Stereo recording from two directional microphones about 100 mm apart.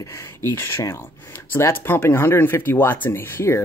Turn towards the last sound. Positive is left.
turn(degrees=25)  # may be behind; listen again after turning